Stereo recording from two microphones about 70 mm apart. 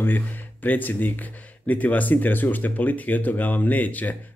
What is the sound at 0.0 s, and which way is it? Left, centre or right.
Speech, left.